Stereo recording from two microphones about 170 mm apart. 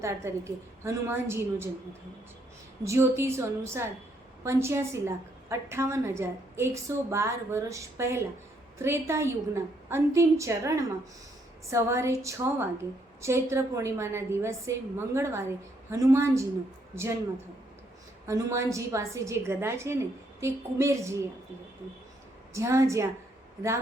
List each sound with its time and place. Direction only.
0.0 s a woman's voice: 15° right (ahead or behind)
18.3 s a woman's voice: 15° right (ahead or behind)
22.5 s a woman's voice: 15° right (ahead or behind)